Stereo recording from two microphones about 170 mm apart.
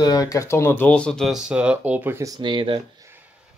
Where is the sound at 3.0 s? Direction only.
15° right (ahead or behind).